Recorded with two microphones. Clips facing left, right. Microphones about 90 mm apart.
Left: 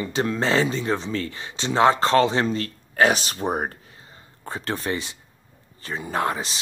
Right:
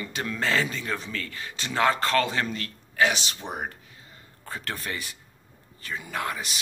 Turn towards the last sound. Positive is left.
turn(degrees=30)  # may be behind; listen again after turning